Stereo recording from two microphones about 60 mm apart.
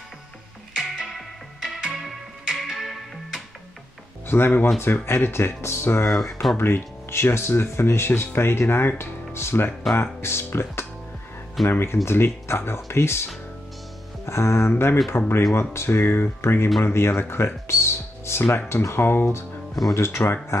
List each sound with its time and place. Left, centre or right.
0.7 s music: centre
4.3 s speech: left
6.0 s speech: centre
6.5 s speech: left